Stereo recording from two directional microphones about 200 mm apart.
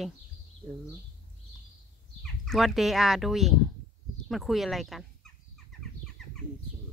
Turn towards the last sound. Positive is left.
turn(degrees=0)  # may be behind; listen again after turning